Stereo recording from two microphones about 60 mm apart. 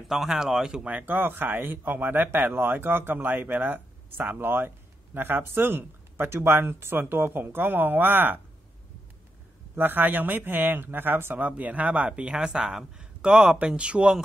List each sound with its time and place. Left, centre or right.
0.1 s a man's voice: centre
0.8 s speech: right
9.8 s a man's voice: right; by 14.1 s centre